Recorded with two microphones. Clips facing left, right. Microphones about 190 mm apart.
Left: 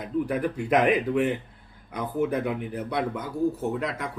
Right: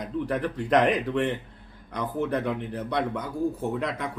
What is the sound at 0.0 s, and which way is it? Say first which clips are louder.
Speech: left 2 dB; 10° left (ahead or behind).